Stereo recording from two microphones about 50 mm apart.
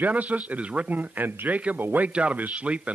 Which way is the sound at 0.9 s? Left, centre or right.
Right.